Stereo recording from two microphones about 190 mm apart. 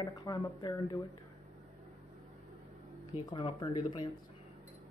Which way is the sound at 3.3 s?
25° left (ahead or behind).